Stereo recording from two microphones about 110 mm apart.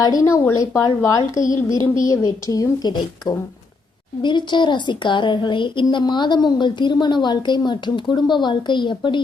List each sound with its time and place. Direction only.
0.0 s a woman's voice: 30° left (ahead or behind); by 9.2 s 45° left (ahead or behind)